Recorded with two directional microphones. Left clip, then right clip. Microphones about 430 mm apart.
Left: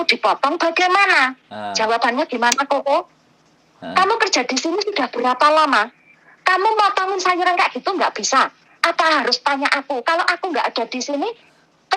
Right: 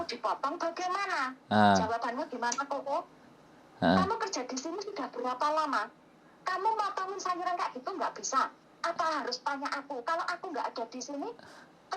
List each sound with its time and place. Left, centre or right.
0.0 s speech: left
1.5 s a woman's voice: right
1.7 s speech: left
11.9 s turkey: left